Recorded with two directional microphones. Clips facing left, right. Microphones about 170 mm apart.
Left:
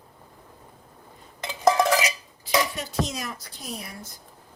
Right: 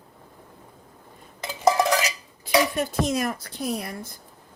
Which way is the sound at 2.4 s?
55° right (ahead or behind).